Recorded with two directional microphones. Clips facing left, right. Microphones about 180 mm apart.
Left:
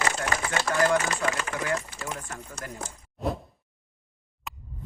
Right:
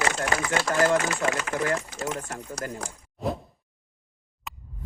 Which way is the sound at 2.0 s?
75° right (ahead or behind).